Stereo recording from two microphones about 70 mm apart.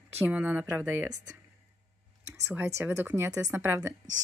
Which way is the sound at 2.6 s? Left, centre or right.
Right.